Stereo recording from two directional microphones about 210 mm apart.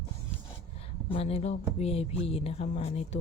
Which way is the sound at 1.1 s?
25° left (ahead or behind).